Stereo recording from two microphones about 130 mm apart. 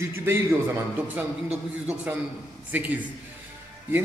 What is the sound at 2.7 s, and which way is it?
Speech, 10° right (ahead or behind).